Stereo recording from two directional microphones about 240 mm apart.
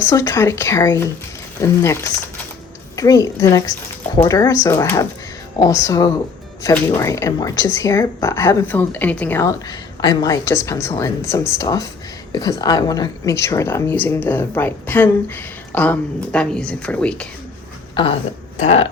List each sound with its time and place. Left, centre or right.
0.1 s speech: centre
17.9 s speech: left